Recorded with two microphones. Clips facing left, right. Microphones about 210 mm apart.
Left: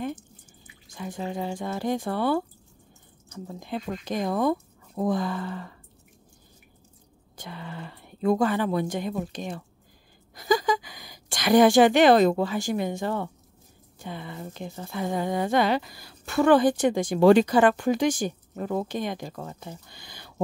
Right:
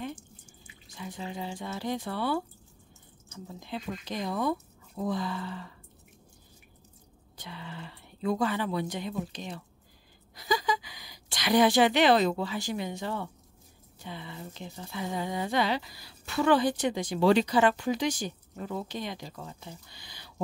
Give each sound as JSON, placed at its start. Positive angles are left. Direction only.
{"t": 0.8, "sound": "speech", "side_deg": 50}
{"t": 7.3, "sound": "a woman's voice", "side_deg": 50}